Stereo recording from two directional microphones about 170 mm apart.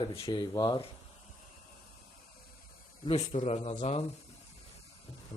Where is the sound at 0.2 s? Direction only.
25° left (ahead or behind).